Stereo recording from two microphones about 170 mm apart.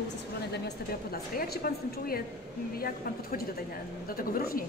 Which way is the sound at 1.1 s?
65° left (ahead or behind).